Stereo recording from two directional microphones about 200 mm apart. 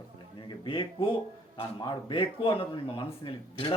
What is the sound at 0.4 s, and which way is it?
Speech, 25° left (ahead or behind).